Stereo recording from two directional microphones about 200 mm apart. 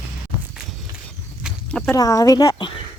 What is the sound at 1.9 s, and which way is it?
Speech, 15° left (ahead or behind).